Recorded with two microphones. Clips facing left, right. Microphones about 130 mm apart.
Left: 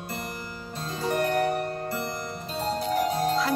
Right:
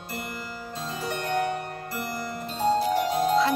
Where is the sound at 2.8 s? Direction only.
Centre (ahead or behind).